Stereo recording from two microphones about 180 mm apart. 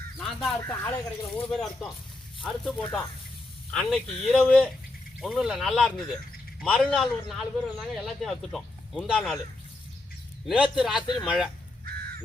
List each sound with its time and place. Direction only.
0.2 s speech: centre (ahead or behind)
0.6 s speech: 15° left (ahead or behind)
10.4 s speech: centre (ahead or behind)
11.0 s speech: 25° left (ahead or behind)
11.3 s speech: 5° right (ahead or behind)